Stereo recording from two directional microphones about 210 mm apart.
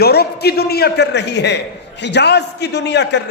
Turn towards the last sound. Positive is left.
turn(degrees=55)  # may be behind; listen again after turning